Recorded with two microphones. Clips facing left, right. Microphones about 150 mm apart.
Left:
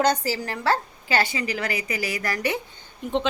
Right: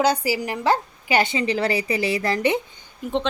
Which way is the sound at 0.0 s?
10° right (ahead or behind).